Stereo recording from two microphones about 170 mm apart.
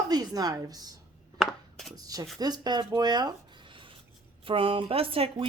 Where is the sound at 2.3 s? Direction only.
25° right (ahead or behind).